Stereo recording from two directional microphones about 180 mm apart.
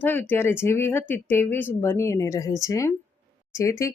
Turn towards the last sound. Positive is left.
turn(degrees=15)  # may be behind; listen again after turning